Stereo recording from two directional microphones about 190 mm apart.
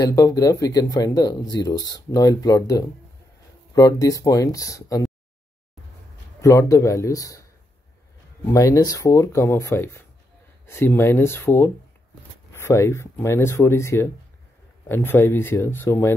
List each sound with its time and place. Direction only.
0.0 s speech: 20° left (ahead or behind)
6.4 s speech: 15° left (ahead or behind)
8.5 s speech: 15° left (ahead or behind)